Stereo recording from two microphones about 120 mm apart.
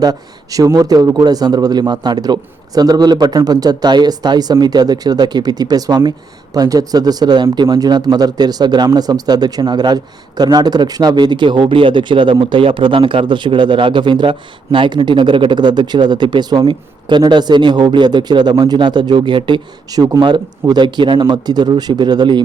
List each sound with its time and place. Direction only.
0.0 s speech: 30° right (ahead or behind)